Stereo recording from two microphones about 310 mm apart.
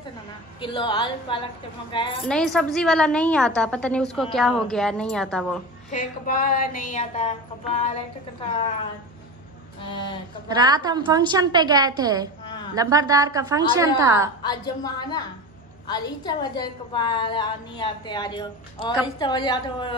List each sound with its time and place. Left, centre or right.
0.6 s a woman's voice: centre
2.2 s a woman's voice: centre
5.9 s a sound: left
10.5 s a woman's voice: centre
14.4 s a woman's voice: centre